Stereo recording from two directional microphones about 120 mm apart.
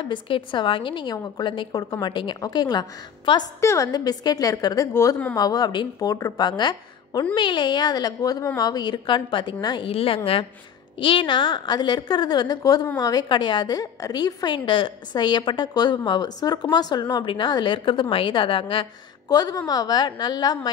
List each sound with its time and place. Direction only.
0.0 s a woman's voice: 45° left (ahead or behind)
9.8 s a woman's voice: 50° left (ahead or behind)
19.2 s a woman's voice: 30° left (ahead or behind)